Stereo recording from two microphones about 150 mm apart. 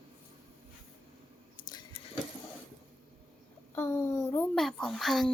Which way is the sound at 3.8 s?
15° left (ahead or behind).